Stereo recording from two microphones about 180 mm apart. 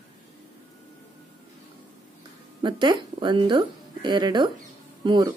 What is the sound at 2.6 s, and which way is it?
A woman's voice, 25° right (ahead or behind).